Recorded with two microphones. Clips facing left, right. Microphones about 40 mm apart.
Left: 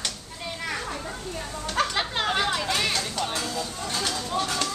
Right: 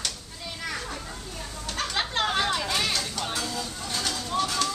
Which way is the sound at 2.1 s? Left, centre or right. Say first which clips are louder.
Even; centre.